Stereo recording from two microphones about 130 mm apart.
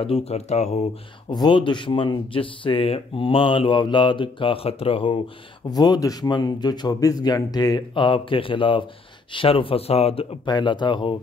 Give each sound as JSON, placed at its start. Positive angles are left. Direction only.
{"t": 0.0, "sound": "speech", "side_deg": 50}
{"t": 1.3, "sound": "speech", "side_deg": 35}
{"t": 5.7, "sound": "speech", "side_deg": 30}
{"t": 10.4, "sound": "speech", "side_deg": 35}